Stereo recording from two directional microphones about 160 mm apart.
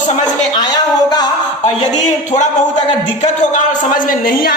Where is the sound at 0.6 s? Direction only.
25° left (ahead or behind).